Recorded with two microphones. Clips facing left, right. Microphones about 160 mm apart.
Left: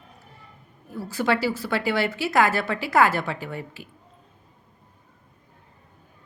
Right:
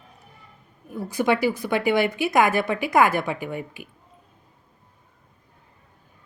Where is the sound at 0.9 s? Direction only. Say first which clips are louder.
Right 2 dB; 15° right (ahead or behind).